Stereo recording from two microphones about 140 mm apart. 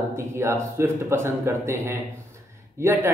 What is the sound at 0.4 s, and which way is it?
A man's voice, 20° right (ahead or behind).